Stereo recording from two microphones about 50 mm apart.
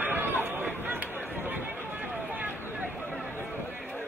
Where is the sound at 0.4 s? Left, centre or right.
Right.